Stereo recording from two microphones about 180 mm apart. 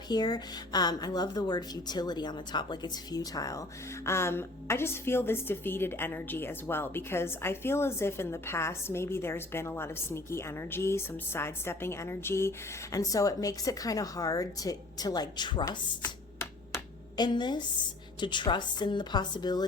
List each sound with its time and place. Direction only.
0.1 s speech: 25° left (ahead or behind)